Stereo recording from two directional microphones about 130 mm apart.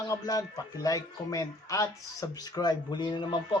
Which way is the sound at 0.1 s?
30° left (ahead or behind).